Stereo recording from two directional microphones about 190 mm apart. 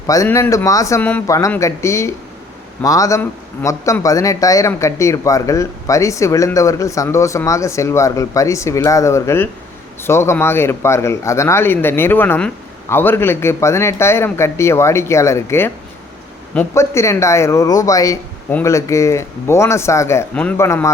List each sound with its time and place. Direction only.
0.1 s a man's voice: 15° left (ahead or behind)